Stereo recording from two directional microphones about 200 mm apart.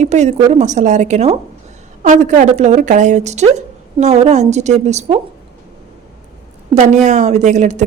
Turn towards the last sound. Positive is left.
turn(degrees=-35)  # may be behind; listen again after turning